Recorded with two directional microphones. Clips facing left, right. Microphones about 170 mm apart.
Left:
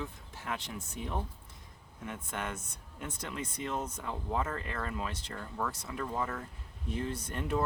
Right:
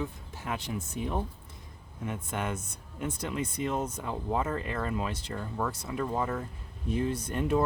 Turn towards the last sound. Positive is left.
turn(degrees=-15)  # may be behind; listen again after turning